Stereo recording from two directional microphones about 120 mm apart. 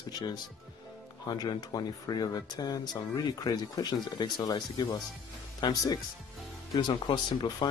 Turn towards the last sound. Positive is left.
turn(degrees=40)  # may be behind; listen again after turning